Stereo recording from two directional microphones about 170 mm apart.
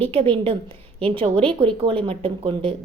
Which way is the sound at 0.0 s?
35° right (ahead or behind).